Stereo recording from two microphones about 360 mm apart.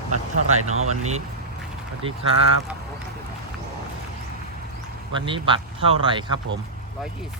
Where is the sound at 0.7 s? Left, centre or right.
Right.